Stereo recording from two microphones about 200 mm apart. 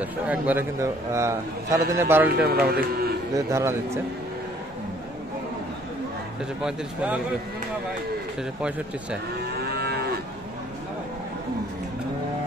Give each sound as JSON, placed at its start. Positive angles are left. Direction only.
{"t": 0.0, "sound": "a man's voice", "side_deg": -10}
{"t": 2.3, "sound": "speech", "side_deg": -50}
{"t": 3.3, "sound": "a man's voice", "side_deg": -15}
{"t": 6.6, "sound": "speech", "side_deg": -5}
{"t": 8.4, "sound": "speech", "side_deg": -5}
{"t": 9.4, "sound": "livestock", "side_deg": -55}